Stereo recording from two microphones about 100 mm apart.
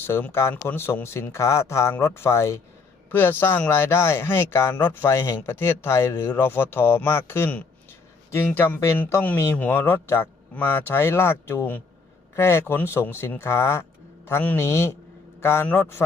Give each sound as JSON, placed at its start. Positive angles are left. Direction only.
{"t": 0.1, "sound": "speech", "side_deg": 20}